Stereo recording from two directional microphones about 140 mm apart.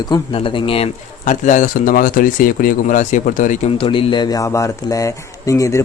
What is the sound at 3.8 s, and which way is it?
Speech, 40° left (ahead or behind).